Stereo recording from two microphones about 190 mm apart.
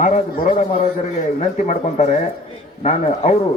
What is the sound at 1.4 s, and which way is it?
A man's voice, 40° left (ahead or behind).